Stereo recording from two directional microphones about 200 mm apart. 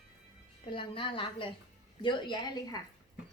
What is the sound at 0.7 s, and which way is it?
A woman's voice, 25° left (ahead or behind).